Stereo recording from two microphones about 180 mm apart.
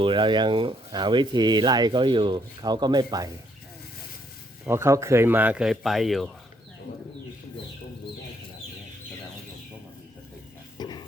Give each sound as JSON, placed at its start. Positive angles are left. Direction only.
{"t": 0.0, "sound": "speech", "side_deg": -25}
{"t": 4.6, "sound": "speech", "side_deg": -15}
{"t": 10.8, "sound": "a sound", "side_deg": 25}